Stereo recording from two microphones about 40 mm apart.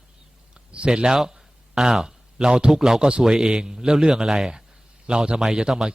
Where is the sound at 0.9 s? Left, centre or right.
Centre.